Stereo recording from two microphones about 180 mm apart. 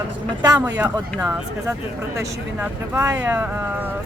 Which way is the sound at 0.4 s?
20° right (ahead or behind).